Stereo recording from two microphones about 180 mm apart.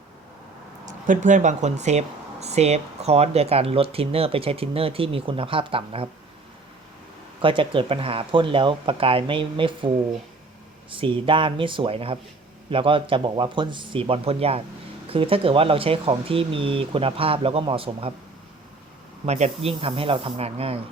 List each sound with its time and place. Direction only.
0.9 s speech: 45° right (ahead or behind); by 6.1 s 30° right (ahead or behind)
7.4 s speech: 30° right (ahead or behind)
10.9 s speech: 30° right (ahead or behind)
19.2 s speech: 35° right (ahead or behind)